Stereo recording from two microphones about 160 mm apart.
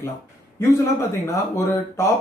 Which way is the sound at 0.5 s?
15° left (ahead or behind).